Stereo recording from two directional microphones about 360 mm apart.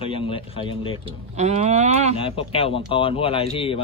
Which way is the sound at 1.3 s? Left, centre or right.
Centre.